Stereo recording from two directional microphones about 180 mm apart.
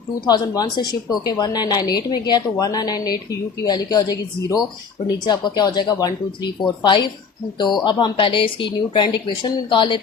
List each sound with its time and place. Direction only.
0.3 s a woman's voice: 20° left (ahead or behind)